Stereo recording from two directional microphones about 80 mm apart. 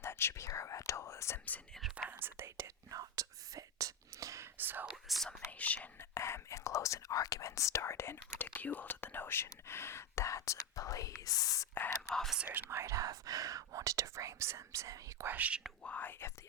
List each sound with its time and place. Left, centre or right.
0.0 s speech: left
2.0 s whispering: right
2.9 s whispering: right
4.5 s whispering: right
4.9 s whispering: centre
5.5 s whispering: centre
6.0 s speech: left
8.5 s speech: centre; by 11.7 s left
11.7 s speech: left
12.5 s speech: right
12.8 s speech: right
15.3 s speech: centre
15.8 s speech: centre